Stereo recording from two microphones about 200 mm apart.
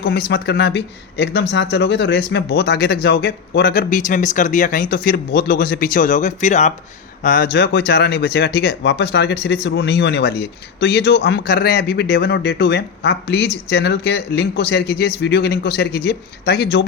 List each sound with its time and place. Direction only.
0.0 s speech: 55° left (ahead or behind); by 6.7 s 35° left (ahead or behind)
7.2 s speech: 45° left (ahead or behind)